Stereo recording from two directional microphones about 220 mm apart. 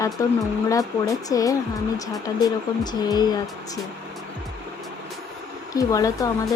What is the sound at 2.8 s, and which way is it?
Speech, 20° left (ahead or behind).